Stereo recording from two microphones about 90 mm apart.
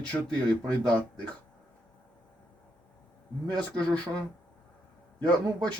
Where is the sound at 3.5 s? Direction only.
50° right (ahead or behind).